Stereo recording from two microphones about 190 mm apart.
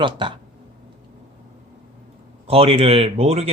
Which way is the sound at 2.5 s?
30° right (ahead or behind).